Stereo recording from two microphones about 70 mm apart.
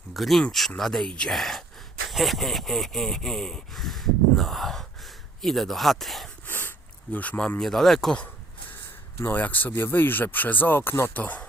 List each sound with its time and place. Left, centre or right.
0.1 s speech: centre
6.5 s sniff: left
7.6 s speech: centre
9.2 s speech: left
11.1 s speech: left